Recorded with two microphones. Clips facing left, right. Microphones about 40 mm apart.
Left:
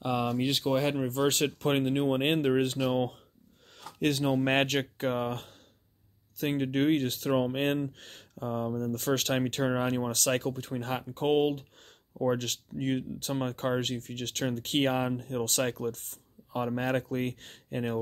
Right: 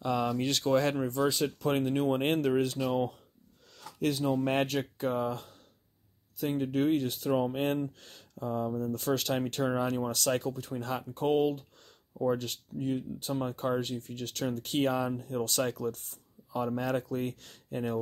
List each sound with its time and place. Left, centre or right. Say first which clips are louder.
0.0 s speech: left 1 dB; centre
1.2 s speech: left 2 dB; left
2.0 s speech: left 1 dB; left
4.0 s speech: left 2 dB; left
9.7 s speech: left 1 dB; left